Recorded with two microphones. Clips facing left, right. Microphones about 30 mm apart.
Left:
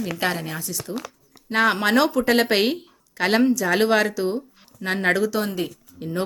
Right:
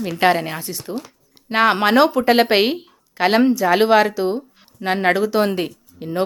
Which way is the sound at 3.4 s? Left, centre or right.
Right.